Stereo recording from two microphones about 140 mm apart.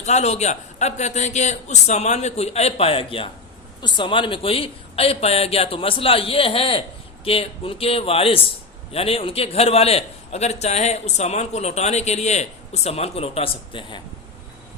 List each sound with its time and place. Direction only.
0.0 s a man's voice: 55° left (ahead or behind)